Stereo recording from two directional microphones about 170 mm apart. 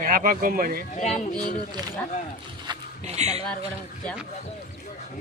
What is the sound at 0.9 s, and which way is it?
Speech, 45° left (ahead or behind).